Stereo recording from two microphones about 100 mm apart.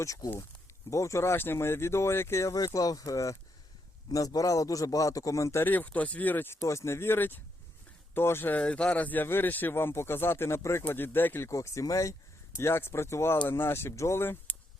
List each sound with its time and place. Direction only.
0.0 s a man's voice: 35° left (ahead or behind)
6.6 s speech: 30° left (ahead or behind)